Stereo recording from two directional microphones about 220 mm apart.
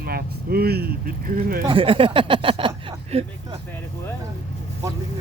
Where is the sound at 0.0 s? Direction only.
45° right (ahead or behind).